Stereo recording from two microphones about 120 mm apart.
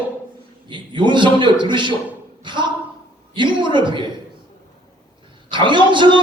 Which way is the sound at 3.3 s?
40° right (ahead or behind).